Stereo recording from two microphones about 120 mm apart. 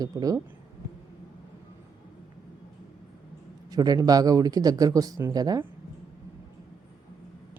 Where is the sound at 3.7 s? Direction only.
35° right (ahead or behind).